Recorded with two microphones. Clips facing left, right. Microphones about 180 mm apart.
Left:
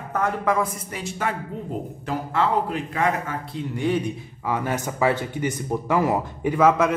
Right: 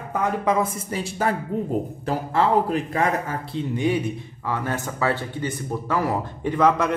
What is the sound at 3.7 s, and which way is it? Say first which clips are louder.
Speech: even; 15° right (ahead or behind).